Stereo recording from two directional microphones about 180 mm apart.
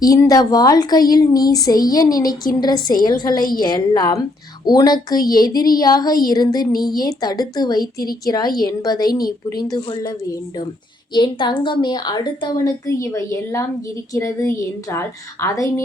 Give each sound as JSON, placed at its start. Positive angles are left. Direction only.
{"t": 0.0, "sound": "a woman's voice", "side_deg": 20}
{"t": 11.1, "sound": "a woman's voice", "side_deg": 25}